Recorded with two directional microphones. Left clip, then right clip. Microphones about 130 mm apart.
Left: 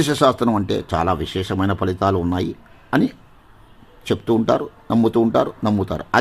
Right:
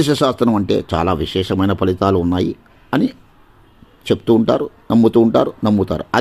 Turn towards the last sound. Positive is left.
turn(degrees=-20)  # may be behind; listen again after turning